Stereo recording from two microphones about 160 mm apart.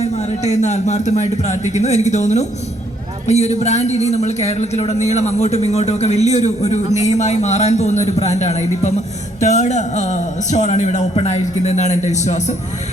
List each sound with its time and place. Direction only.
0.0 s a man's voice: 45° left (ahead or behind)